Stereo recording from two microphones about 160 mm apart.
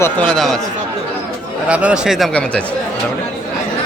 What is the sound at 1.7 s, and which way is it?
Speech, 5° right (ahead or behind).